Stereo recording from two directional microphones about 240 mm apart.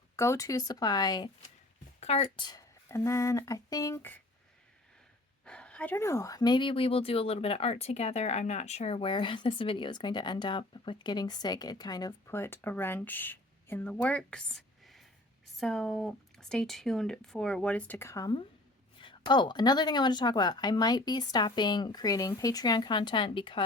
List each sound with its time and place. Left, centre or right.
0.2 s speech: centre
5.5 s speech: centre; by 23.6 s left